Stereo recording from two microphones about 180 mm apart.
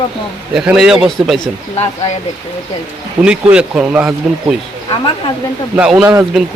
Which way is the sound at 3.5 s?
5° right (ahead or behind).